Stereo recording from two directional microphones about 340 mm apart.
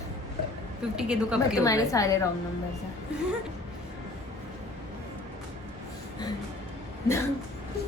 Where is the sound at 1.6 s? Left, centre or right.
Centre.